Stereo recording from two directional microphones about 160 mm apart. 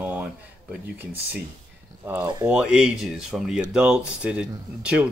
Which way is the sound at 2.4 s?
5° right (ahead or behind).